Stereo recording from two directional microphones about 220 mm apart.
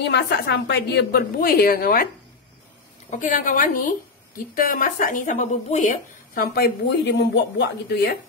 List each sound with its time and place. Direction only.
0.0 s a woman's voice: 50° left (ahead or behind)
3.1 s speech: 35° left (ahead or behind)